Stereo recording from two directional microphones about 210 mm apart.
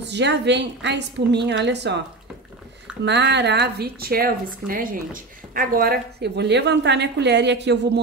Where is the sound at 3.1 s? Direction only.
55° right (ahead or behind).